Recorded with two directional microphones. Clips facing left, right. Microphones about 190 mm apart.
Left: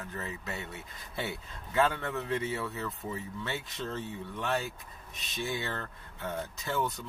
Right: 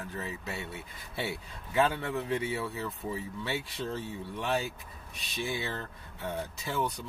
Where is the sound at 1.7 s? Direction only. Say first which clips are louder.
Right 1 dB; 15° right (ahead or behind).